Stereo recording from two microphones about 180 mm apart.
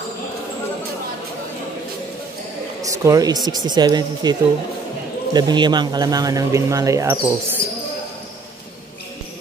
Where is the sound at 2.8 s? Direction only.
20° right (ahead or behind).